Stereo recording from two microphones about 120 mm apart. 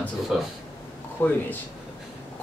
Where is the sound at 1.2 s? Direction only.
15° left (ahead or behind).